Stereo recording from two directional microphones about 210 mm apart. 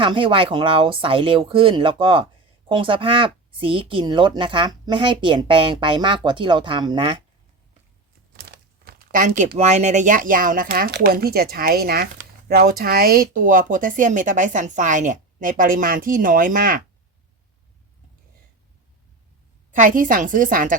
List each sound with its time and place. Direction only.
0.0 s speech: 25° right (ahead or behind)
8.4 s speech: 45° right (ahead or behind)
19.7 s speech: 40° right (ahead or behind)